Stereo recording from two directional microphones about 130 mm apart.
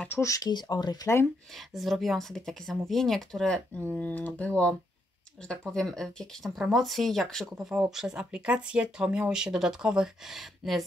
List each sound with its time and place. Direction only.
0.1 s speech: 25° left (ahead or behind)
1.8 s speech: centre (ahead or behind)